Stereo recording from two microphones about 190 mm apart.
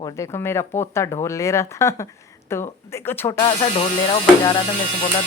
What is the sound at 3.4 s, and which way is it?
Speech, 25° left (ahead or behind).